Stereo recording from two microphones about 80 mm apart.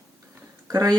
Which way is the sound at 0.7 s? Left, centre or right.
Right.